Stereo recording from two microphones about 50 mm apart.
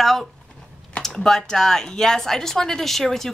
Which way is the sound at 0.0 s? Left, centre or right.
Centre.